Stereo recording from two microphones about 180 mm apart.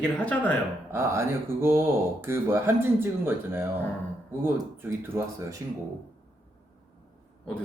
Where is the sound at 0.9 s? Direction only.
15° right (ahead or behind).